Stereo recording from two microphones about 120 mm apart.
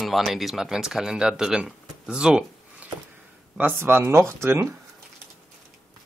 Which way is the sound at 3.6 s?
20° right (ahead or behind).